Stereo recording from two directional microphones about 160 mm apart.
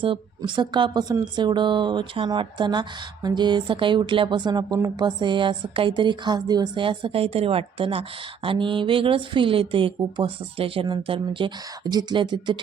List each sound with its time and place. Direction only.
0.0 s a woman's voice: 30° right (ahead or behind)